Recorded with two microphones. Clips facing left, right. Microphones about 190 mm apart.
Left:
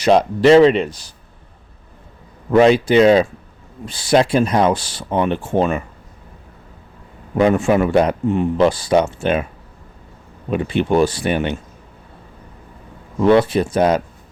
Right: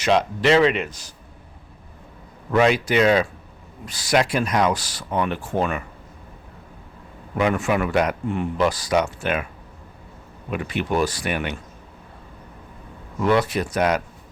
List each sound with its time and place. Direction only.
0.0 s speech: 35° left (ahead or behind)
2.5 s speech: 30° left (ahead or behind)
7.3 s speech: 30° left (ahead or behind)
10.5 s speech: 30° left (ahead or behind)
13.1 s speech: 30° left (ahead or behind)